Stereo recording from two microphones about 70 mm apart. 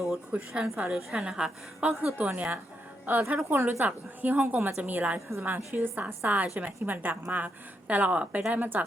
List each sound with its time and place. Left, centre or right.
0.3 s a woman's voice: centre
2.1 s a woman's voice: right